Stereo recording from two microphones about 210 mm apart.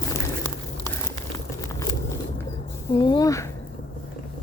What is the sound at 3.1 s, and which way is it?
Speech, 15° left (ahead or behind).